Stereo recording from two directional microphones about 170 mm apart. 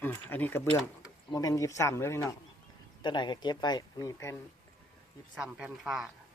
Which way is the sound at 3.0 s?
25° left (ahead or behind).